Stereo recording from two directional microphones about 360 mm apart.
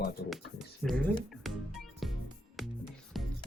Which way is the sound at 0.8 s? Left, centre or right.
Centre.